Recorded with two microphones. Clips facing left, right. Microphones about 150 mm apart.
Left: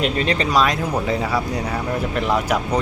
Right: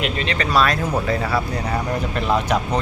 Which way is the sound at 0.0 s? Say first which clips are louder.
Left 3 dB; 35° left (ahead or behind).